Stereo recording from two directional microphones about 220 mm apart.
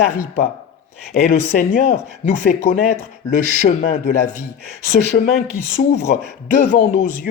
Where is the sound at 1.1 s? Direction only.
40° left (ahead or behind).